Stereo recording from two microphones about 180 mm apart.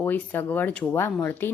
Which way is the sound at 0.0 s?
10° left (ahead or behind).